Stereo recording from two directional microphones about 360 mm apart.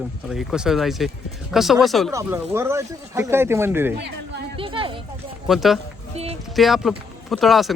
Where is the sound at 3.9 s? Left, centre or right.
Right.